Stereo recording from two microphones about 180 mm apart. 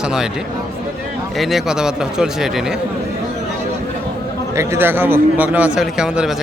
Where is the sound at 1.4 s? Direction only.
Centre (ahead or behind).